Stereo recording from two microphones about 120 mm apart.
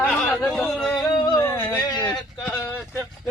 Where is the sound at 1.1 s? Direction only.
40° left (ahead or behind).